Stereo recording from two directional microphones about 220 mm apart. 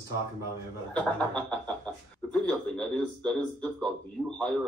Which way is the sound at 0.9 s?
5° left (ahead or behind).